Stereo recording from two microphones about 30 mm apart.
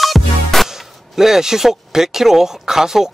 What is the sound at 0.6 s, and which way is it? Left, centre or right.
Speech, centre.